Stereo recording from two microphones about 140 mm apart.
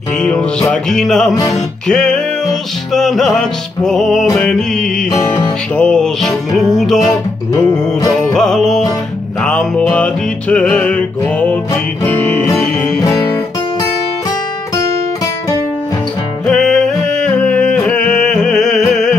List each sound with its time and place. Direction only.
0.2 s music: 5° left (ahead or behind)
7.0 s music: 25° left (ahead or behind)
8.1 s music: centre (ahead or behind)
16.4 s music: 5° left (ahead or behind)